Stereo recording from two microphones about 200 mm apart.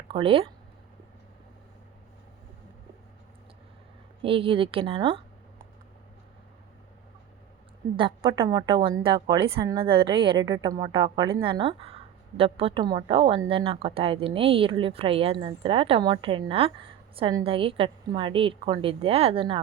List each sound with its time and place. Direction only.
0.1 s a woman's voice: 25° right (ahead or behind)
4.2 s speech: 25° right (ahead or behind)
7.9 s a woman's voice: 25° right (ahead or behind)